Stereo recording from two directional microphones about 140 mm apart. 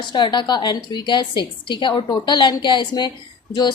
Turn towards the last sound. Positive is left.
turn(degrees=30)  # may be behind; listen again after turning